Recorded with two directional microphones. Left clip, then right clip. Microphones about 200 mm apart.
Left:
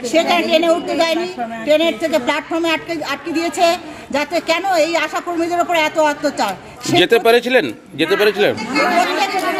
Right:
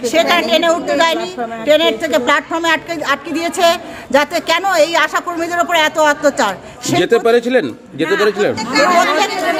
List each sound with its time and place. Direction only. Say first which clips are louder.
0.0 s speech: right 2 dB; 20° right (ahead or behind)
7.0 s speech: even; 5° right (ahead or behind)
8.5 s speech: right 4 dB; 15° right (ahead or behind)